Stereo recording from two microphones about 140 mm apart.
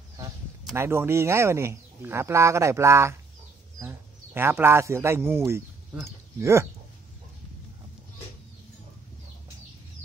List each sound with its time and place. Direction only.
0.7 s speech: 15° right (ahead or behind)